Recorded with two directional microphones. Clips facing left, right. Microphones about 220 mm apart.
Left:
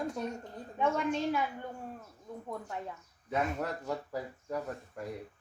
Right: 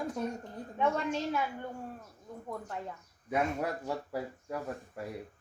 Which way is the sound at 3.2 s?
10° right (ahead or behind).